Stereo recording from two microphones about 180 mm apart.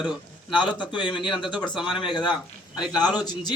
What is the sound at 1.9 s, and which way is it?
Speech, 25° left (ahead or behind).